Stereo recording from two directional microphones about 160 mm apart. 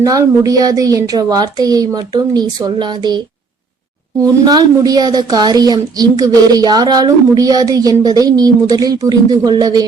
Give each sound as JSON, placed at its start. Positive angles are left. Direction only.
{"t": 0.0, "sound": "a woman's voice", "side_deg": -20}
{"t": 4.2, "sound": "a woman's voice", "side_deg": -25}